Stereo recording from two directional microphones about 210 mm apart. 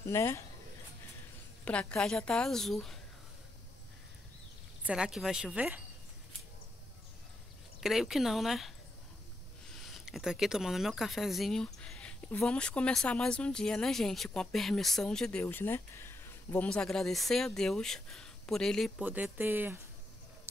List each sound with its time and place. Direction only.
0.0 s speech: 10° left (ahead or behind)
1.6 s speech: 5° left (ahead or behind)
4.8 s speech: 5° right (ahead or behind)
7.8 s speech: centre (ahead or behind)
9.8 s speech: centre (ahead or behind)